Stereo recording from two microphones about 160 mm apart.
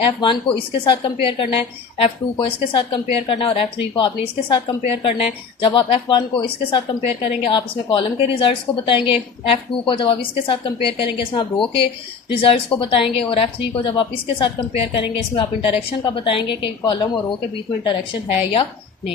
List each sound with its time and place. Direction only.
0.0 s a woman's voice: 30° left (ahead or behind)